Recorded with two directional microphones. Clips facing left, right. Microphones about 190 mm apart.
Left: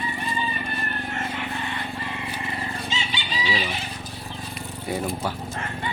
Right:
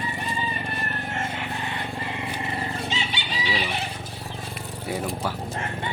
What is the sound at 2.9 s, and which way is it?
Chicken, 60° right (ahead or behind).